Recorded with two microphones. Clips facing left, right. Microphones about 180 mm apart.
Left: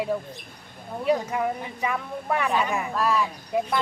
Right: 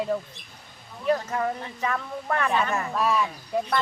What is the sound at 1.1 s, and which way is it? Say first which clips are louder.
Speech: left 1 dB; 10° left (ahead or behind).